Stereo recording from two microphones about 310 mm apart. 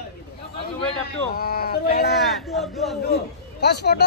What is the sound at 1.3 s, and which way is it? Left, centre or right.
Speech, left.